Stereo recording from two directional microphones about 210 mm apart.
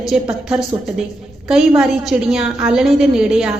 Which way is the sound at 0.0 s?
Centre (ahead or behind).